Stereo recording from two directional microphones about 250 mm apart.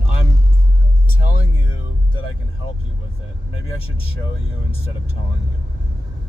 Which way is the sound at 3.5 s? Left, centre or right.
Left.